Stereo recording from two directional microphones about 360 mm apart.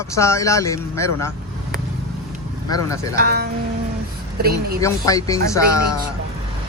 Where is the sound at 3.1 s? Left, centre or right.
Right.